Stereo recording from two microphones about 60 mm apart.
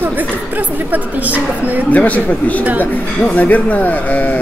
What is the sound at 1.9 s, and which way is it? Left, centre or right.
Speech, left.